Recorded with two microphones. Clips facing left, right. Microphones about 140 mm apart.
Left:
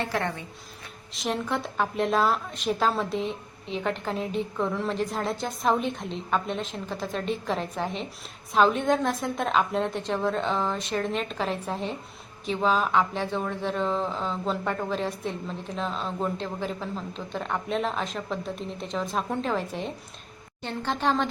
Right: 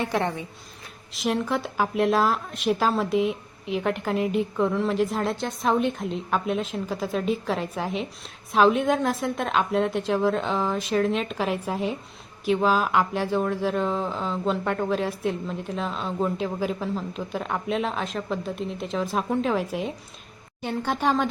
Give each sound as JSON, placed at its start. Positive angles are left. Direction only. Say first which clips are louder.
{"t": 0.0, "sound": "a woman's voice", "louder": "right 3 dB", "side_deg": -20}
{"t": 1.1, "sound": "a woman's voice", "louder": "right 3 dB", "side_deg": 0}